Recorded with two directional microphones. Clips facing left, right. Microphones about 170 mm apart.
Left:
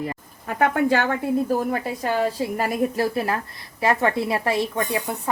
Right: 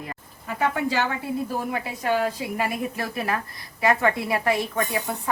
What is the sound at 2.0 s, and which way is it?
A woman's voice, 35° left (ahead or behind).